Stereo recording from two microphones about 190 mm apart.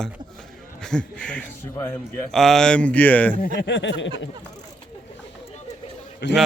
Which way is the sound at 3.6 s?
70° left (ahead or behind).